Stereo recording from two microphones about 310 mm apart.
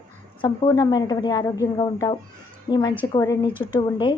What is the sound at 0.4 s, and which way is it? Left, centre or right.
Speech, centre.